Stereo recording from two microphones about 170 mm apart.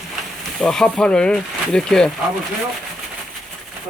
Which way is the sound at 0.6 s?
5° left (ahead or behind).